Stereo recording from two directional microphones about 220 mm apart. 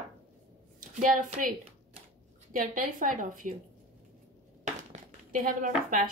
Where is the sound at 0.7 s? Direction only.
35° right (ahead or behind).